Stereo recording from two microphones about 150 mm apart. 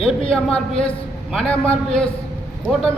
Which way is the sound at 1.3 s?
5° left (ahead or behind).